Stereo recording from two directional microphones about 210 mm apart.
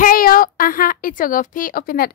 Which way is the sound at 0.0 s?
45° left (ahead or behind).